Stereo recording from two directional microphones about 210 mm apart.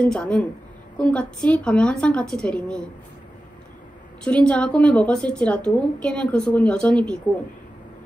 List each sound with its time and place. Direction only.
0.0 s speech: 5° left (ahead or behind)
4.2 s speech: 5° left (ahead or behind)